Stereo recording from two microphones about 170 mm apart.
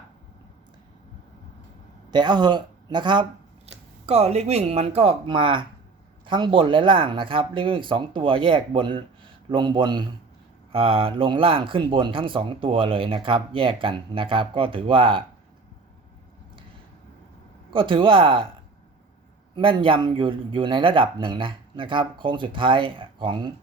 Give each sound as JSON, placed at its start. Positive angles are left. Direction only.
{"t": 2.0, "sound": "a man's voice", "side_deg": -25}
{"t": 17.7, "sound": "speech", "side_deg": -30}
{"t": 19.5, "sound": "speech", "side_deg": -30}